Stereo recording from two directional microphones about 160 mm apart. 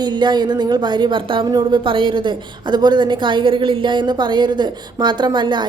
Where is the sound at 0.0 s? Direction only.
25° right (ahead or behind).